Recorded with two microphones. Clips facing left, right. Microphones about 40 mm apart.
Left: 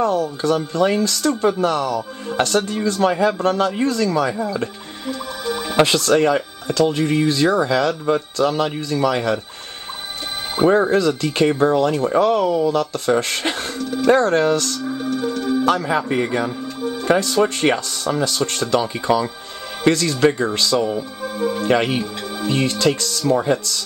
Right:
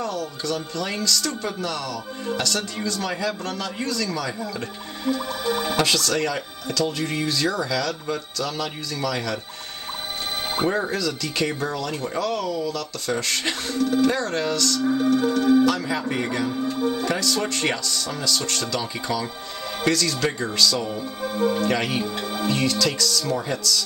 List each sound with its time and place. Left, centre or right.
0.0 s a man's voice: left
5.0 s music: centre
5.8 s speech: left
10.7 s a man's voice: left
14.9 s music: centre
15.6 s speech: left
16.6 s speech: centre
17.1 s speech: left
21.2 s music: centre
21.6 s speech: left
22.0 s music: centre
22.5 s speech: left